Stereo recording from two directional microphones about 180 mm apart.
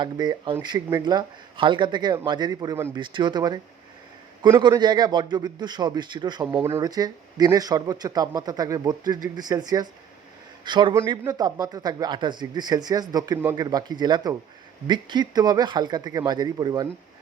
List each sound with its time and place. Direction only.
0.0 s speech: 25° right (ahead or behind)
6.5 s speech: 15° right (ahead or behind)